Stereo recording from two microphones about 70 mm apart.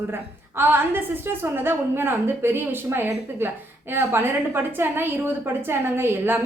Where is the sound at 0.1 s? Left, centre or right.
Right.